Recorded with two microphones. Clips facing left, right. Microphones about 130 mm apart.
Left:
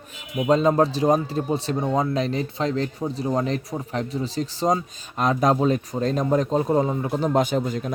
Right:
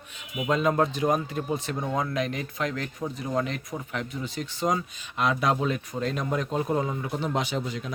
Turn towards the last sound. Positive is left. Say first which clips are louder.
# left 7 dB
turn(degrees=45)  # may be behind; listen again after turning